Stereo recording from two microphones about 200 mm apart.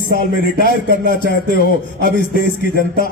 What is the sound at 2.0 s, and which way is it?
Speech, 45° left (ahead or behind).